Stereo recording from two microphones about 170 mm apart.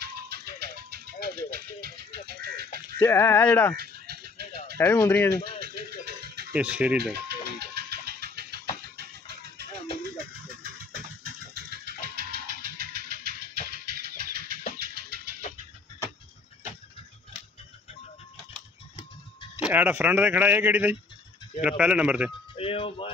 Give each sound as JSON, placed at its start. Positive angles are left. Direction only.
{"t": 0.0, "sound": "music", "side_deg": -65}
{"t": 3.0, "sound": "speech", "side_deg": 15}
{"t": 3.7, "sound": "a sound", "side_deg": -65}
{"t": 4.7, "sound": "speech", "side_deg": 15}
{"t": 5.3, "sound": "a sound", "side_deg": -65}
{"t": 6.5, "sound": "speech", "side_deg": -5}
{"t": 7.2, "sound": "engine", "side_deg": -70}
{"t": 11.2, "sound": "a sound", "side_deg": -70}
{"t": 19.5, "sound": "speech", "side_deg": -10}
{"t": 22.6, "sound": "speech", "side_deg": 35}